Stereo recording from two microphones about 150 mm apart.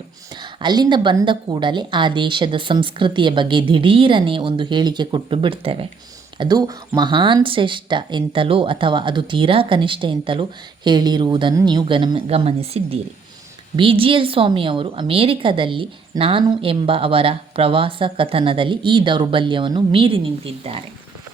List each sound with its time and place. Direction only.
0.3 s a woman's voice: 30° right (ahead or behind)
6.4 s a woman's voice: 25° right (ahead or behind)